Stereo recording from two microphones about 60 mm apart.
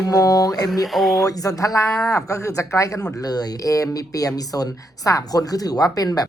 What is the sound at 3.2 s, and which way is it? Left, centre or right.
Speech, left.